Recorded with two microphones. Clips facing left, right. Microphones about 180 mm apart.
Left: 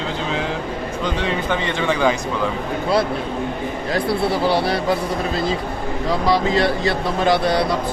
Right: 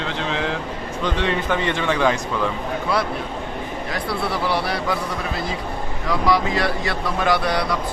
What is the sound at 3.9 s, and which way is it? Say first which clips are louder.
Speech: left 6 dB; 30° left (ahead or behind).